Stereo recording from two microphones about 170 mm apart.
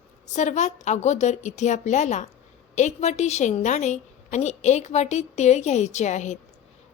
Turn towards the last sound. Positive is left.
turn(degrees=45)  # may be behind; listen again after turning